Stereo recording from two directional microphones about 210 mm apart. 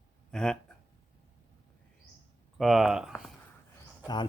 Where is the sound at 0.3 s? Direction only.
5° left (ahead or behind).